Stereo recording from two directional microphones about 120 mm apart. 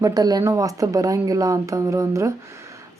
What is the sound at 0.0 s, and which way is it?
A woman's voice, 30° right (ahead or behind).